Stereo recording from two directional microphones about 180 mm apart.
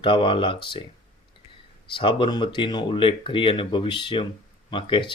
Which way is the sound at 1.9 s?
25° left (ahead or behind).